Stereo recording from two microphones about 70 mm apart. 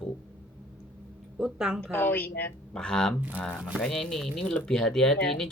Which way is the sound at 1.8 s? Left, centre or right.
Left.